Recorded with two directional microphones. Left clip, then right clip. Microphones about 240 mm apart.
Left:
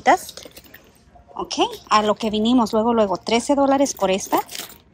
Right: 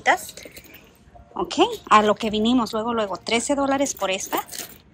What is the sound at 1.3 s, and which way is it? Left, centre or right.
A woman's voice, centre.